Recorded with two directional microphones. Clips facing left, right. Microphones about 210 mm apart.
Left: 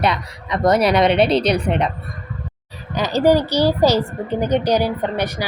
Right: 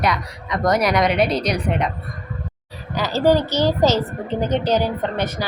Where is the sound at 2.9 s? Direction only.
20° left (ahead or behind).